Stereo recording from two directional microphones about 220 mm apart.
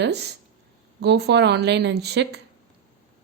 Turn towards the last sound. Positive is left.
turn(degrees=-50)  # may be behind; listen again after turning